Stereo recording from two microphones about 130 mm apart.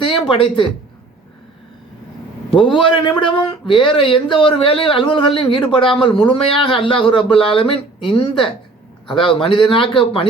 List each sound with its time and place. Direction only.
0.0 s speech: 40° left (ahead or behind)
2.5 s a man's voice: 40° left (ahead or behind)